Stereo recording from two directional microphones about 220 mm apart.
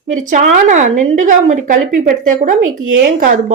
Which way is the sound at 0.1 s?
35° right (ahead or behind).